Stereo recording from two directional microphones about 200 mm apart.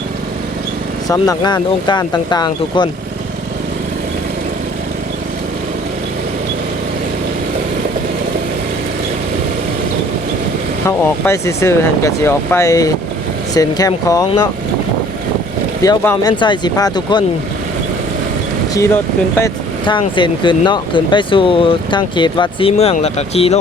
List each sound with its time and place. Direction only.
1.0 s speech: 20° left (ahead or behind)
10.8 s speech: 15° left (ahead or behind)
15.8 s speech: 20° left (ahead or behind)
18.7 s speech: 15° left (ahead or behind); by 23.6 s 30° left (ahead or behind)